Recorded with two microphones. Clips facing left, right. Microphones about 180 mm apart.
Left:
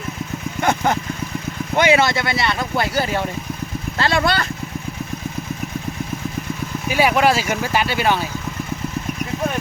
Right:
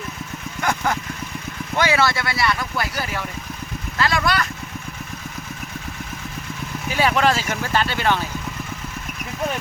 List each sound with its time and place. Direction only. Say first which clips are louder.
0.6 s vehicle: left 4 dB; 25° left (ahead or behind)
1.7 s speech: left 4 dB; 20° left (ahead or behind)
6.8 s speech: left 3 dB; 10° left (ahead or behind)